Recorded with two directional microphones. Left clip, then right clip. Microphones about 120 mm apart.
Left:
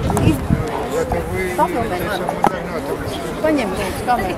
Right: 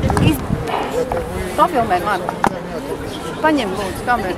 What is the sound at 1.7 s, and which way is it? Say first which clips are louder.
Speech: right 4 dB; 15° right (ahead or behind).